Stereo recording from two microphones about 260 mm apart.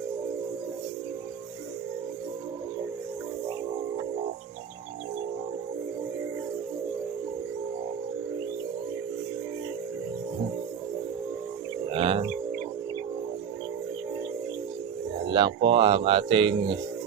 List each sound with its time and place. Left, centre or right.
11.9 s music: right
15.3 s a sound: centre
15.7 s speech: right